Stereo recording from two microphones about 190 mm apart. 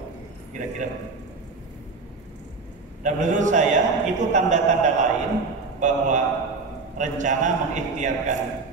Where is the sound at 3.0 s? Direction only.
40° right (ahead or behind).